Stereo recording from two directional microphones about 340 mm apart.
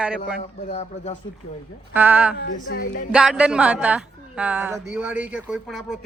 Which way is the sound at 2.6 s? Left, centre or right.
Left.